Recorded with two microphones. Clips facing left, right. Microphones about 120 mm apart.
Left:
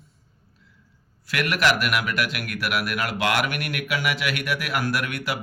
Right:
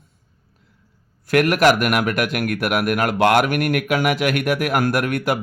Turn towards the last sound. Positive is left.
turn(degrees=-50)  # may be behind; listen again after turning